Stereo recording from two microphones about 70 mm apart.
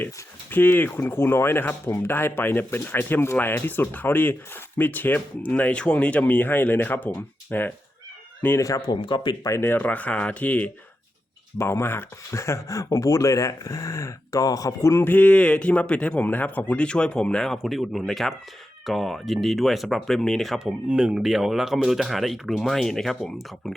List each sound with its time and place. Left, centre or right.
0.5 s speech: left
8.5 s speech: left
8.9 s speech: left
9.5 s speech: left
11.5 s speech: left
15.0 s a man's voice: left; by 20.6 s centre
20.7 s speech: centre